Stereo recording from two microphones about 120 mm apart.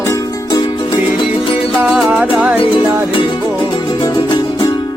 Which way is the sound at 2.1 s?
10° right (ahead or behind).